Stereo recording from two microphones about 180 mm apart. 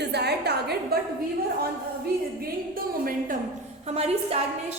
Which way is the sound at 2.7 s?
55° right (ahead or behind).